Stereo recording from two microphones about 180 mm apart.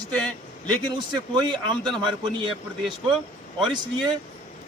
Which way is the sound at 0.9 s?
25° right (ahead or behind).